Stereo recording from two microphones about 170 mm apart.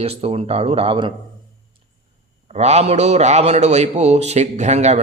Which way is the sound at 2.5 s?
40° right (ahead or behind).